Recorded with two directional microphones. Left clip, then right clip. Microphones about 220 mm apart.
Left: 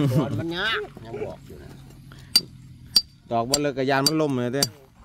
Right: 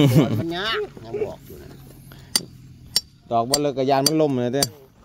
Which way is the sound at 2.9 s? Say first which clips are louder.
Even; 5° left (ahead or behind).